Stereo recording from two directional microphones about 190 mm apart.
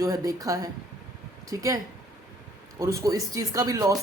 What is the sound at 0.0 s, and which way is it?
A man's voice, 15° right (ahead or behind).